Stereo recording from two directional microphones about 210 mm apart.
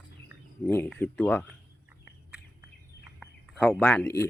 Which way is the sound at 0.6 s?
10° left (ahead or behind).